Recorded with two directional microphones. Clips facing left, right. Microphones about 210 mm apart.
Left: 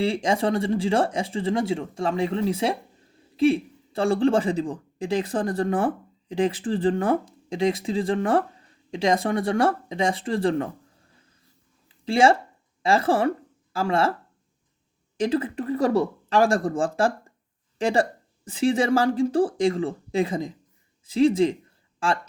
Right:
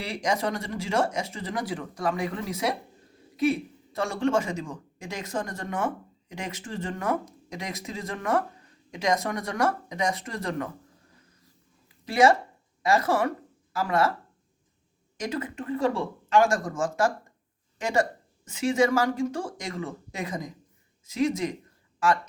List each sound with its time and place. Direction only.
0.0 s speech: 30° left (ahead or behind)
12.0 s speech: 30° left (ahead or behind)
15.2 s speech: 30° left (ahead or behind)